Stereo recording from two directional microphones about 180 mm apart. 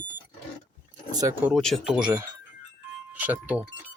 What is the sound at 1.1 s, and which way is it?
Speech, 15° right (ahead or behind).